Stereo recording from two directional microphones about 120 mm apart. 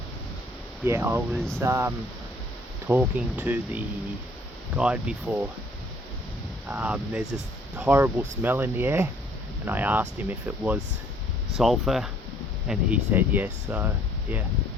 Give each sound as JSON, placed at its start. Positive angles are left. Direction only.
{"t": 0.9, "sound": "speech", "side_deg": -20}
{"t": 6.7, "sound": "speech", "side_deg": -10}
{"t": 11.5, "sound": "speech", "side_deg": 0}